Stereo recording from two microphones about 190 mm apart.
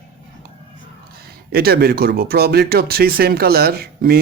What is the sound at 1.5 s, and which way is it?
Speech, 55° right (ahead or behind).